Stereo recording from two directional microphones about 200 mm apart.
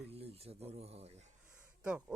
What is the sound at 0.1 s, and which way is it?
Speech, 30° right (ahead or behind).